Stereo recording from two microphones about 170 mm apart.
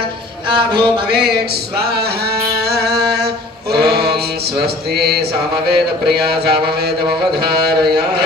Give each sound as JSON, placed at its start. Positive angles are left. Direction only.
{"t": 0.5, "sound": "music", "side_deg": -30}
{"t": 2.7, "sound": "music", "side_deg": -70}
{"t": 3.7, "sound": "mantra", "side_deg": -70}
{"t": 5.7, "sound": "a sound", "side_deg": -70}